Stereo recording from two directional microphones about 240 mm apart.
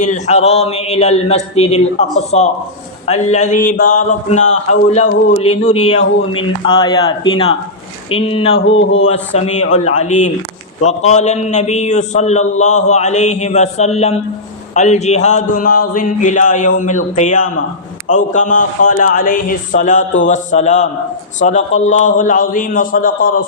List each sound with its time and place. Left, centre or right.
0.0 s a man's voice: left
8.5 s speech: left
9.0 s a man's voice: left